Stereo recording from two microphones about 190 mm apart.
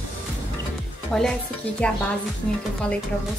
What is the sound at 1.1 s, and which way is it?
Speech, 5° left (ahead or behind).